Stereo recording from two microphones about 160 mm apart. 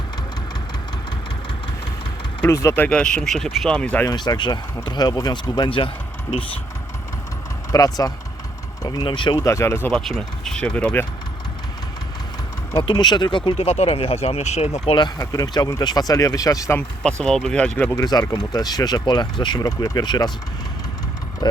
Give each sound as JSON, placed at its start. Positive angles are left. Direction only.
{"t": 2.5, "sound": "speech", "side_deg": 20}
{"t": 4.1, "sound": "speech", "side_deg": 25}
{"t": 7.7, "sound": "speech", "side_deg": 20}
{"t": 9.9, "sound": "speech", "side_deg": 5}
{"t": 12.7, "sound": "speech", "side_deg": 25}
{"t": 15.2, "sound": "speech", "side_deg": 20}
{"t": 17.0, "sound": "speech", "side_deg": 5}
{"t": 18.0, "sound": "speech", "side_deg": 25}